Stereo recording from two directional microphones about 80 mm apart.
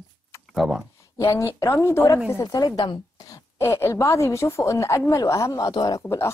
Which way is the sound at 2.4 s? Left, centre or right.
Left.